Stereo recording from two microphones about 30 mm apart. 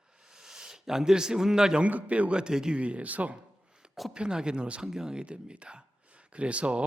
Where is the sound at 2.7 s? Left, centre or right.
Right.